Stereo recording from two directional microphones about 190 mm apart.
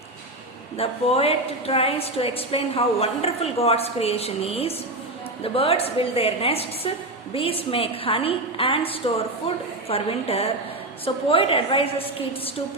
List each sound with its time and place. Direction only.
0.8 s a woman's voice: 30° left (ahead or behind)